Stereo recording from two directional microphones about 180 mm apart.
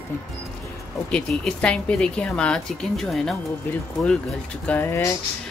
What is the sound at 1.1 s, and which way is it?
A woman's voice, 5° left (ahead or behind).